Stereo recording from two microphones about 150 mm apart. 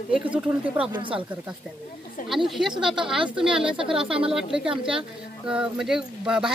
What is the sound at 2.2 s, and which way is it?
Speech, centre (ahead or behind).